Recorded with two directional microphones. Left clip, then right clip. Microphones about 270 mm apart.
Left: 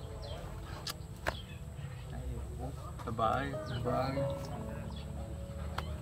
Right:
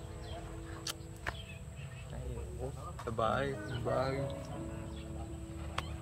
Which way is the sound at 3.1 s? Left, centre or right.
Centre.